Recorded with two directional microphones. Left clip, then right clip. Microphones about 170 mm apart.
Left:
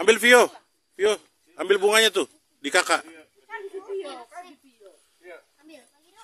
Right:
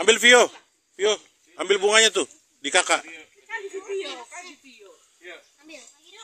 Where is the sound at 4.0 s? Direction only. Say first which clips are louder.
Right 2 dB; 25° left (ahead or behind).